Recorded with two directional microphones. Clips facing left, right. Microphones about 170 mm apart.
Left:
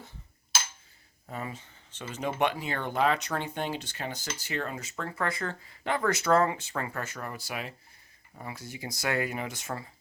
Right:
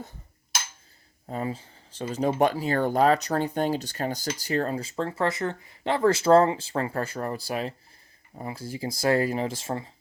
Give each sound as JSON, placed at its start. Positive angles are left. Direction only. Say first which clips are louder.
{"t": 1.3, "sound": "speech", "louder": "right 7 dB", "side_deg": -30}